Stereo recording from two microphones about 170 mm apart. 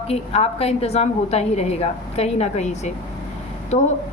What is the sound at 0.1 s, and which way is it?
A woman's voice, 35° left (ahead or behind).